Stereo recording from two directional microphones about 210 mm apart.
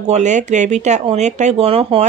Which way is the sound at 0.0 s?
35° right (ahead or behind).